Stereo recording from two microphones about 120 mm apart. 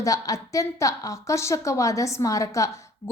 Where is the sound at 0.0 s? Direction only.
30° left (ahead or behind).